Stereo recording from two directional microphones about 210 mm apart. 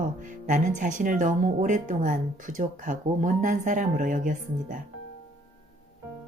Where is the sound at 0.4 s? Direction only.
35° right (ahead or behind).